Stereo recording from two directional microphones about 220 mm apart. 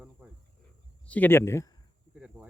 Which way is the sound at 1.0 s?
5° left (ahead or behind).